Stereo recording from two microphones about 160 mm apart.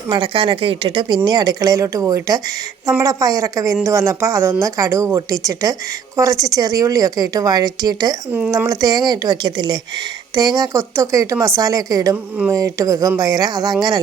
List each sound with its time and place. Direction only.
0.1 s speech: 30° right (ahead or behind)